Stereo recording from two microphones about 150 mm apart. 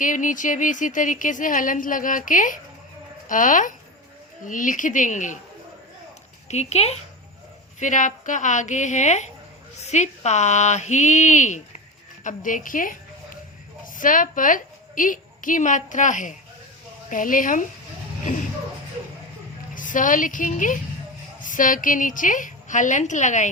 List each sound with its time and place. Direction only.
0.0 s speech: 60° left (ahead or behind)
6.5 s speech: 45° left (ahead or behind)
7.8 s a woman's voice: 55° left (ahead or behind)
19.7 s a woman's voice: 60° left (ahead or behind)